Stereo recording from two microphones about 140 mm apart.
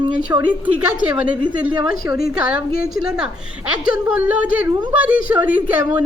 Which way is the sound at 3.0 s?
5° right (ahead or behind).